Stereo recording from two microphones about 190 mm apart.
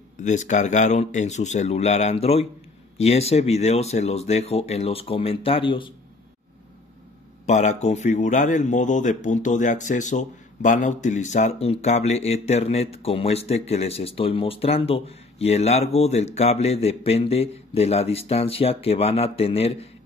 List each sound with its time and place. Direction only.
0.2 s speech: 40° left (ahead or behind)
7.4 s speech: 35° left (ahead or behind)